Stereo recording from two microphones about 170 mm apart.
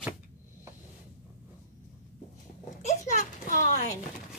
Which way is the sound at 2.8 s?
45° left (ahead or behind).